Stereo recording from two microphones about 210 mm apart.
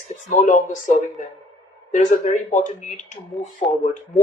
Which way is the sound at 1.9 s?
35° left (ahead or behind).